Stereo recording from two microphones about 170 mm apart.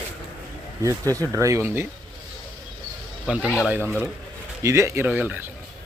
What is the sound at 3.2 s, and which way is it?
Speech, 5° right (ahead or behind).